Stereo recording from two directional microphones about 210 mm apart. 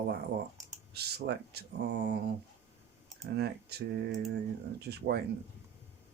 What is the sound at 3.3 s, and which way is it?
Speech, 50° right (ahead or behind).